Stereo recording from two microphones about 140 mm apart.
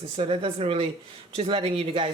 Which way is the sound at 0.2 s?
45° right (ahead or behind).